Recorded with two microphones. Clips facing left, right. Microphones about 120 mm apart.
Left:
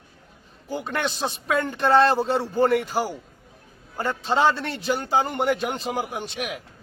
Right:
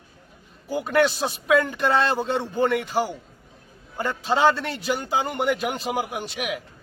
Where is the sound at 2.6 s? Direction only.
40° left (ahead or behind).